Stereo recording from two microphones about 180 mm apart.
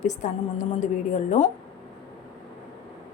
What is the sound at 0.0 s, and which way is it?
A woman's voice, 40° left (ahead or behind).